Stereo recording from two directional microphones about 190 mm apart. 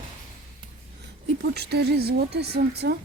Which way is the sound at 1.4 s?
60° right (ahead or behind).